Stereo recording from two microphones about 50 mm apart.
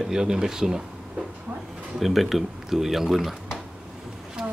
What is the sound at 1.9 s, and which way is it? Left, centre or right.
Speech, centre.